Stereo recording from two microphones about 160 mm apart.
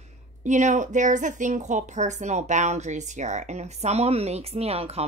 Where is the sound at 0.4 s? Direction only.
50° right (ahead or behind).